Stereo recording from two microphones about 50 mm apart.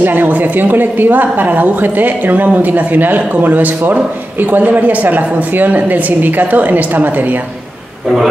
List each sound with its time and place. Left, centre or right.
0.0 s a woman's voice: right